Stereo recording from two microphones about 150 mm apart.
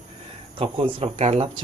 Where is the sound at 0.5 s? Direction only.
35° right (ahead or behind).